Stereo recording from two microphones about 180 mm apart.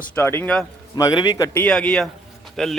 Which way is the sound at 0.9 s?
20° left (ahead or behind).